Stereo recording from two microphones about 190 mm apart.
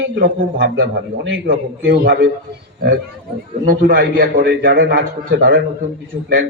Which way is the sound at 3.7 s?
45° right (ahead or behind).